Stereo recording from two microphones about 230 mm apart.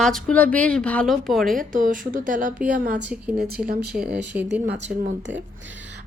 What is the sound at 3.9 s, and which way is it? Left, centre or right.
Speech, centre.